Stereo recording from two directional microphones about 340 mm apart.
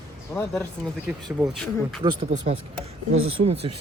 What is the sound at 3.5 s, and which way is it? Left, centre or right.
Speech, right.